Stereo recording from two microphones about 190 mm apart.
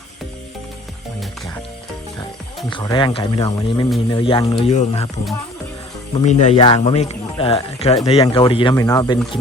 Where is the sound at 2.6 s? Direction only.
25° left (ahead or behind).